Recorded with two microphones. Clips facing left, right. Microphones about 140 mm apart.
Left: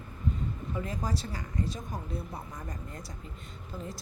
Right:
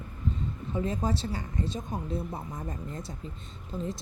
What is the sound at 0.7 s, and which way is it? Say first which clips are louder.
Speech: right 6 dB; 25° right (ahead or behind).